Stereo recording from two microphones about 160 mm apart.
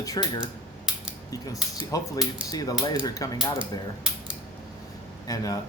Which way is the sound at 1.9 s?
25° left (ahead or behind).